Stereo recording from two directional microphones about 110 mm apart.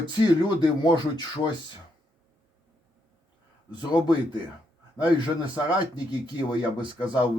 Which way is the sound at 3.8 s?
40° left (ahead or behind).